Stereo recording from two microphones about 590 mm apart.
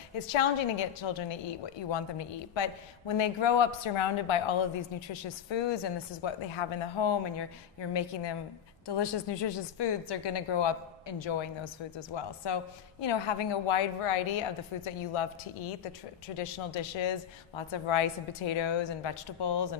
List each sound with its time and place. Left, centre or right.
0.8 s a woman's voice: left